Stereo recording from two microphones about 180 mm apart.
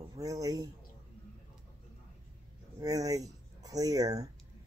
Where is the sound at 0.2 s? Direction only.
20° right (ahead or behind).